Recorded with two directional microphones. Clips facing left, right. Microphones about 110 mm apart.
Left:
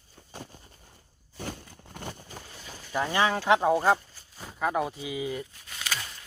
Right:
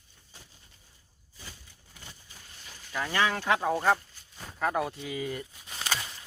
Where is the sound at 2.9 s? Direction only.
20° left (ahead or behind).